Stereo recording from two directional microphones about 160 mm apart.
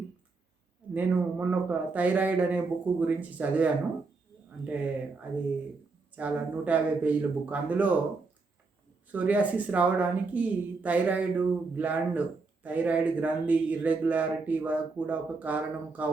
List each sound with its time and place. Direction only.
0.9 s speech: 10° right (ahead or behind)
6.1 s speech: 10° right (ahead or behind)
9.1 s speech: 10° right (ahead or behind)